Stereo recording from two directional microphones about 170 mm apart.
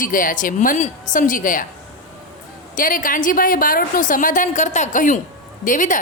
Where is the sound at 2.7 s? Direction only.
55° left (ahead or behind).